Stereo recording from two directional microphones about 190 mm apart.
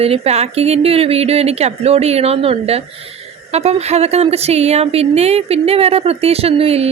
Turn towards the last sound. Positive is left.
turn(degrees=-30)  # may be behind; listen again after turning